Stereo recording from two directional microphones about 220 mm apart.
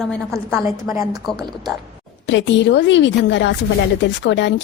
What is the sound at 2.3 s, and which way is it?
A woman's voice, 55° left (ahead or behind).